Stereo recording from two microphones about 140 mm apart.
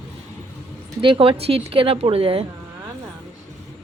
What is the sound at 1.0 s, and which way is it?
A woman's voice, 40° right (ahead or behind).